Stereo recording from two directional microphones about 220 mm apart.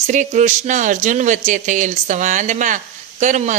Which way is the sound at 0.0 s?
35° right (ahead or behind).